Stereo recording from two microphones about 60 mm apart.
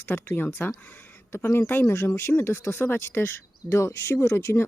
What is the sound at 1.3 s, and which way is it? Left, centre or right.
Speech, left.